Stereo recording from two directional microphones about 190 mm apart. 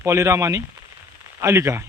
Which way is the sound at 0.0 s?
15° right (ahead or behind).